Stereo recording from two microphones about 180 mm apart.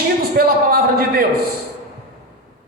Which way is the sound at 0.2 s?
55° right (ahead or behind).